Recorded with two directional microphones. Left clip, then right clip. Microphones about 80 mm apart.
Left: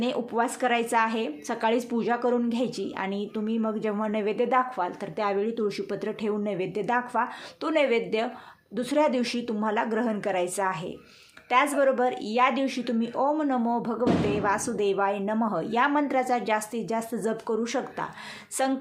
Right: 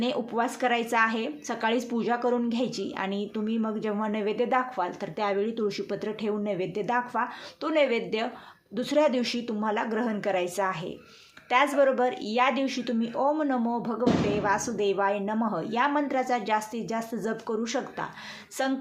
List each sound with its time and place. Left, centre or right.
0.0 s a woman's voice: left